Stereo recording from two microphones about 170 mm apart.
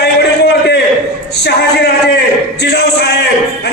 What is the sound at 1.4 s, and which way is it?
A man's voice, 75° left (ahead or behind).